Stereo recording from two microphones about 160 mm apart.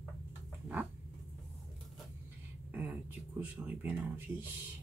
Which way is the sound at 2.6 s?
10° right (ahead or behind).